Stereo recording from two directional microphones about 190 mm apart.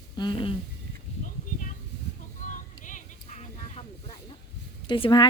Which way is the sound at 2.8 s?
40° left (ahead or behind).